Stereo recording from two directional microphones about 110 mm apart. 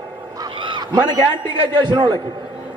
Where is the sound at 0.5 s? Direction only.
45° right (ahead or behind).